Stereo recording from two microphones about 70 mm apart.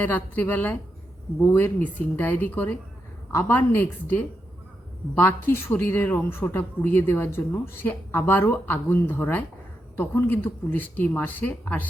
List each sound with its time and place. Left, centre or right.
0.0 s a woman's voice: left
5.5 s a woman's voice: left